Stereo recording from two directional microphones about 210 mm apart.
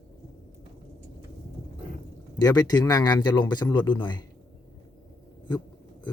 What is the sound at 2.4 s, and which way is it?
A man's voice, 20° left (ahead or behind).